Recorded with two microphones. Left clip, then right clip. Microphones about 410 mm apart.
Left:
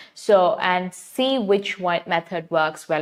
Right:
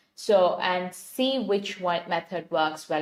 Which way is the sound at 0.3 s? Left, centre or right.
Left.